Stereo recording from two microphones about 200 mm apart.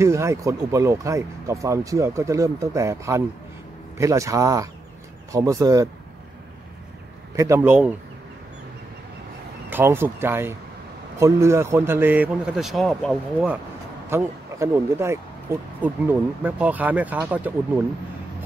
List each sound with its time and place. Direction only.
0.0 s speech: 15° right (ahead or behind)
7.3 s speech: 15° right (ahead or behind)
9.7 s speech: 10° right (ahead or behind)
14.0 s speech: 10° right (ahead or behind)